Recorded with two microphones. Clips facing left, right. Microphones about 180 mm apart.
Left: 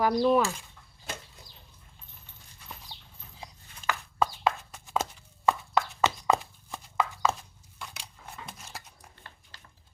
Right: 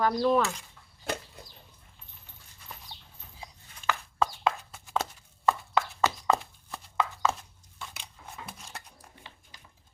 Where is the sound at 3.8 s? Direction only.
40° left (ahead or behind).